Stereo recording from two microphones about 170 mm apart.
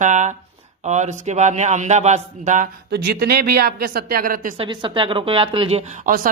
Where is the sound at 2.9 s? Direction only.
70° right (ahead or behind); by 4.5 s 55° right (ahead or behind).